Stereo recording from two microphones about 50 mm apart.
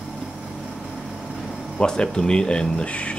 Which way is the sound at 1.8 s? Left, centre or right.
Centre.